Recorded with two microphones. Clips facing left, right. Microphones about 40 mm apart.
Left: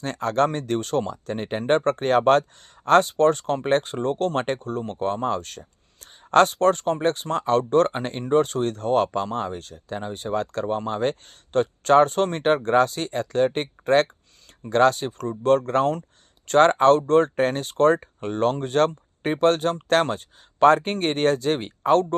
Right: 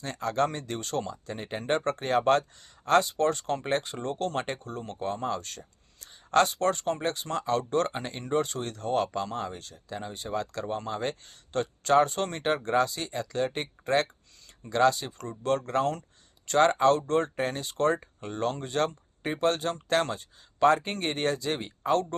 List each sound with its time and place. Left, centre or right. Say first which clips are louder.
0.0 s speech: left 6 dB; left
3.7 s speech: left 10 dB; left